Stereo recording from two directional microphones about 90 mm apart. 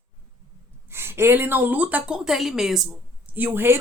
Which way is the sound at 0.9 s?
25° right (ahead or behind).